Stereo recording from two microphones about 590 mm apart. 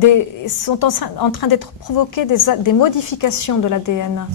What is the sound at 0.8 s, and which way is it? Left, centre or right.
A woman's voice, left.